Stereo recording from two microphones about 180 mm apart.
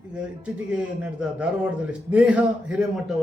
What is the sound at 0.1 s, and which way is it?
A man's voice, 5° right (ahead or behind).